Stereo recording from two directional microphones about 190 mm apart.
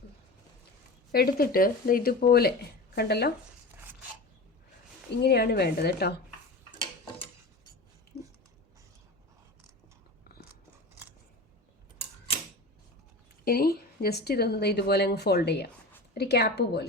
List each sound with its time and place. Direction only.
1.1 s speech: 55° left (ahead or behind)
5.2 s speech: 60° left (ahead or behind)
13.4 s speech: 50° left (ahead or behind)